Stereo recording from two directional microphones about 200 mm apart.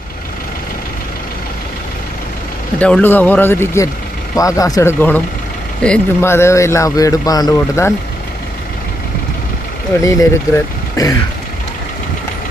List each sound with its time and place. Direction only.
2.7 s speech: 5° left (ahead or behind)
10.0 s speech: 15° left (ahead or behind)